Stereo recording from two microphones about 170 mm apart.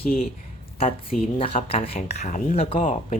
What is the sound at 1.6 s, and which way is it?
Speech, 35° left (ahead or behind).